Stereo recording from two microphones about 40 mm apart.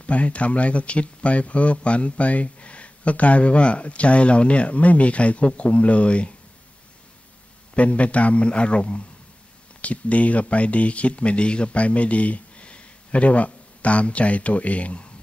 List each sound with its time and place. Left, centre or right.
0.0 s speech: left
7.7 s speech: left